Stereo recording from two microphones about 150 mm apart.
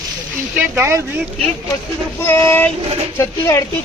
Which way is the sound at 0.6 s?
15° right (ahead or behind).